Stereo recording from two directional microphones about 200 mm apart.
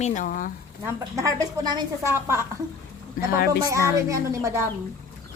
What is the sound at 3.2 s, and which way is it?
Speech, 40° left (ahead or behind).